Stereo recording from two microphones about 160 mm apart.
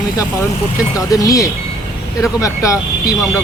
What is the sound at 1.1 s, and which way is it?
Speech, 20° left (ahead or behind).